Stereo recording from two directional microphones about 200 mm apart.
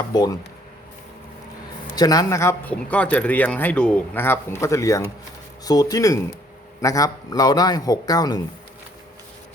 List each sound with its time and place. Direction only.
0.1 s a man's voice: 20° left (ahead or behind)
2.0 s a man's voice: 20° left (ahead or behind)